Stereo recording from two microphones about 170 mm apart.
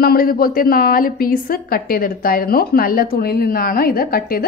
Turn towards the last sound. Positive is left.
turn(degrees=60)  # may be behind; listen again after turning